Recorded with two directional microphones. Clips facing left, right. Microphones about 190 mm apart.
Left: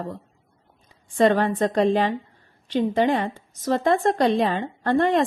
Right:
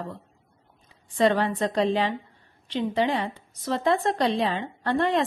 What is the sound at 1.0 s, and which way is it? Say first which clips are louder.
A woman's voice: left 3 dB; 50° left (ahead or behind).